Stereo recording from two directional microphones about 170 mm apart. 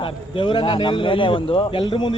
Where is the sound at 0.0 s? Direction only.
30° left (ahead or behind).